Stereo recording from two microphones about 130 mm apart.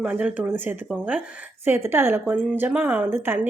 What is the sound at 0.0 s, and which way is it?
Speech, 10° right (ahead or behind).